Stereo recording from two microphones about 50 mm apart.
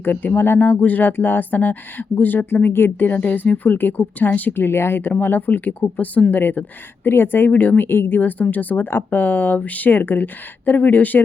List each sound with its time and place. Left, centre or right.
0.0 s speech: left
0.7 s speech: left
4.6 s speech: left
7.9 s speech: left
8.2 s speech: left